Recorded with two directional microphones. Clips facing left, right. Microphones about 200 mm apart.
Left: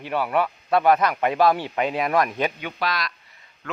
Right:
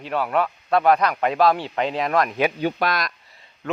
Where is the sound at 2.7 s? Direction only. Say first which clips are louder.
Right 3 dB; 50° right (ahead or behind).